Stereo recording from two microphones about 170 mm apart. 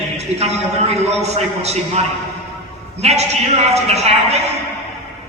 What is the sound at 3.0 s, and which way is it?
A man's voice, 40° right (ahead or behind).